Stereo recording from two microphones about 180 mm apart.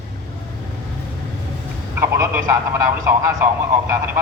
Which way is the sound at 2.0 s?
15° right (ahead or behind).